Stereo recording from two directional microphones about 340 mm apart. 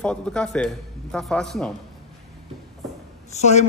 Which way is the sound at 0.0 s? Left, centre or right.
Centre.